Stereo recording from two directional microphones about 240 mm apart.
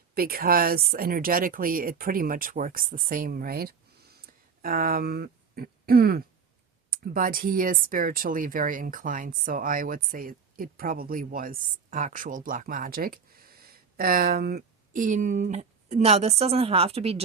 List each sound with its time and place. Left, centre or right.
0.1 s speech: right